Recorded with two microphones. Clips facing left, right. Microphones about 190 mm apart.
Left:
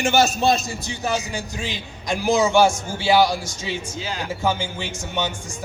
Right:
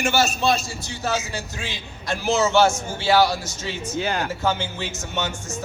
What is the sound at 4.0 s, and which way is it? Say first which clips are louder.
Speech: right 5 dB; 60° right (ahead or behind).